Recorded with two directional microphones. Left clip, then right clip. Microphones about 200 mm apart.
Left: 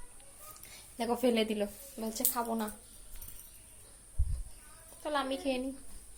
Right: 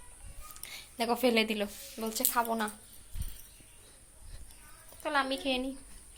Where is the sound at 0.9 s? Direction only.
10° right (ahead or behind).